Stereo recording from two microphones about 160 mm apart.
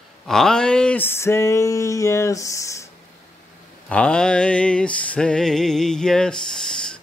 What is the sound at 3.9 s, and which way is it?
Music, 5° left (ahead or behind).